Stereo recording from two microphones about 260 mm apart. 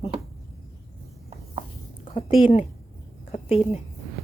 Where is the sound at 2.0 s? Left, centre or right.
Left.